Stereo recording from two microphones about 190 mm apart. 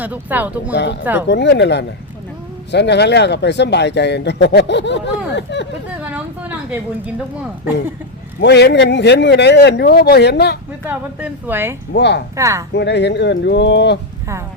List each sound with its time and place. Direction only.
0.0 s speech: 10° right (ahead or behind)
1.3 s speech: 65° left (ahead or behind)
6.1 s a sound: 10° right (ahead or behind)
8.4 s speech: 65° left (ahead or behind)
10.8 s speech: 10° right (ahead or behind)
11.9 s speech: 65° left (ahead or behind)
12.4 s speech: 15° right (ahead or behind)
12.7 s speech: 65° left (ahead or behind)